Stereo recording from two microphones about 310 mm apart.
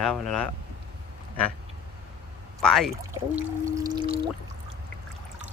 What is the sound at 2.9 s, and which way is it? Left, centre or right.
Speech, centre.